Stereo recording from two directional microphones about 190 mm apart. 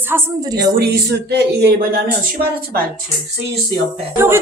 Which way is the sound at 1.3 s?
60° right (ahead or behind).